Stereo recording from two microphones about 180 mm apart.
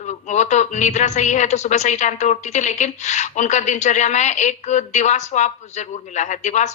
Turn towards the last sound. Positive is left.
turn(degrees=40)  # may be behind; listen again after turning